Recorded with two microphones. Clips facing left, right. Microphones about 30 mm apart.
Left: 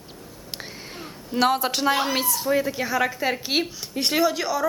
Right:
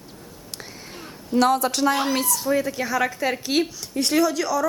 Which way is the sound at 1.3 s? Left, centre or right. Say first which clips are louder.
Right 2 dB; left.